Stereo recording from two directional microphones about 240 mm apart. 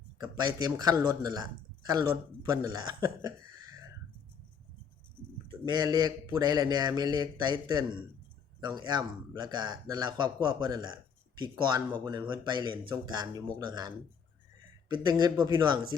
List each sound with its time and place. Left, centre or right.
0.2 s a man's voice: centre
5.6 s a man's voice: centre